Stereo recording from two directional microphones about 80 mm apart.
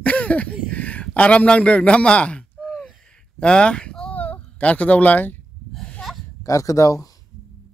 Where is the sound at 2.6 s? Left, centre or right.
Centre.